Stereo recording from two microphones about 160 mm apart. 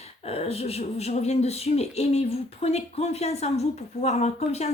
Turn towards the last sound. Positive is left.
turn(degrees=45)  # may be behind; listen again after turning